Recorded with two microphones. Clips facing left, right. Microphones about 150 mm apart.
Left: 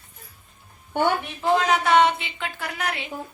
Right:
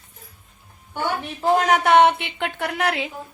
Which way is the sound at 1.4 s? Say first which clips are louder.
Right 3 dB; 50° right (ahead or behind).